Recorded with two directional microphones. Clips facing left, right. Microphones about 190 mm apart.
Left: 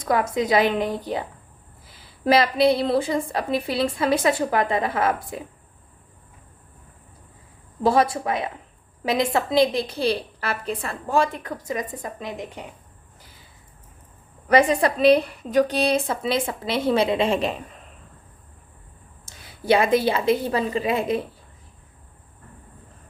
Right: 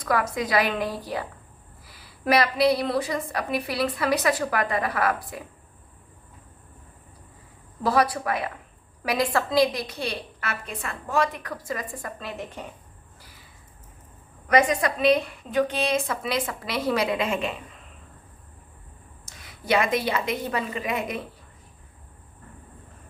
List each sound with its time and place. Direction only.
0.0 s a woman's voice: 25° left (ahead or behind)
7.8 s a woman's voice: 25° left (ahead or behind)
14.4 s a woman's voice: 30° left (ahead or behind)
19.4 s a woman's voice: 30° left (ahead or behind)